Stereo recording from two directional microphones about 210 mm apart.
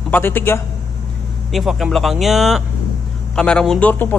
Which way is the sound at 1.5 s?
Centre (ahead or behind).